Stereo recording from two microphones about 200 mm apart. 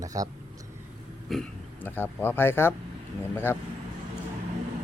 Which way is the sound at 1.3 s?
5° left (ahead or behind).